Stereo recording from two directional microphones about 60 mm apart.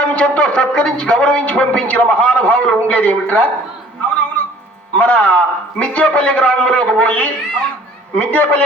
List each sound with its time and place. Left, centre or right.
0.0 s speech: centre
4.9 s speech: left